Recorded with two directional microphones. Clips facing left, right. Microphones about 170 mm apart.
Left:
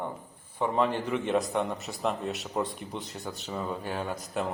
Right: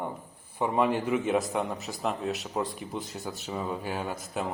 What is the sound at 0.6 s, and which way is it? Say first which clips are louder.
A man's voice: right 1 dB; 10° right (ahead or behind).